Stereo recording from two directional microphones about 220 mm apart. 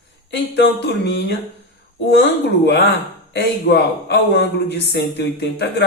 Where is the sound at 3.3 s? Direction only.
50° left (ahead or behind).